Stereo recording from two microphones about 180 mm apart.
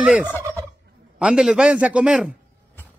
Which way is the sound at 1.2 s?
5° right (ahead or behind).